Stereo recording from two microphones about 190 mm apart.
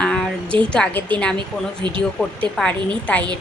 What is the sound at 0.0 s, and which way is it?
A woman's voice, 5° left (ahead or behind).